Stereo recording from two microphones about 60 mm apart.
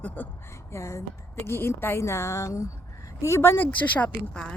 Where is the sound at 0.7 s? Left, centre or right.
Left.